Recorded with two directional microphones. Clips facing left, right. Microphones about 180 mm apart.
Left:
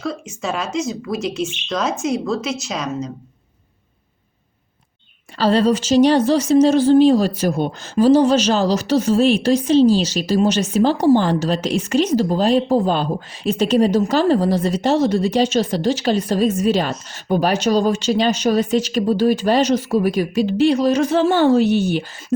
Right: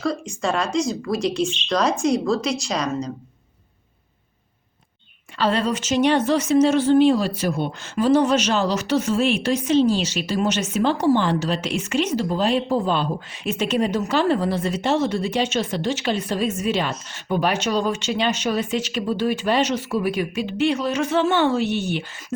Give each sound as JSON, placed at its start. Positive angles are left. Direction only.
{"t": 0.0, "sound": "speech", "side_deg": 5}
{"t": 5.4, "sound": "speech", "side_deg": 35}